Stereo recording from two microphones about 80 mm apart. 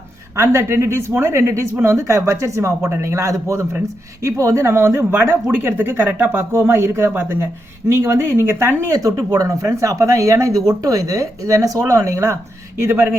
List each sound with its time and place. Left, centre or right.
0.3 s speech: right